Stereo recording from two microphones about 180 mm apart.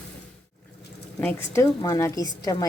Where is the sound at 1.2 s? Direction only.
15° left (ahead or behind).